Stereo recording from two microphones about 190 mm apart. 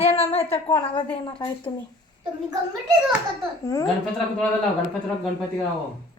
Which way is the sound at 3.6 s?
20° left (ahead or behind).